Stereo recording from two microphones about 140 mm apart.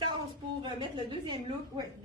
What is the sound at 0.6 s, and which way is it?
Speech, 35° right (ahead or behind).